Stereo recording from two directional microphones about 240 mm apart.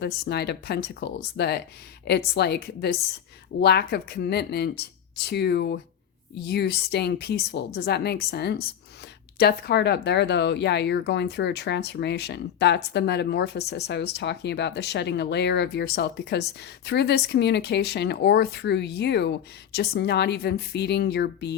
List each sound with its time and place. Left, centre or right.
0.0 s speech: left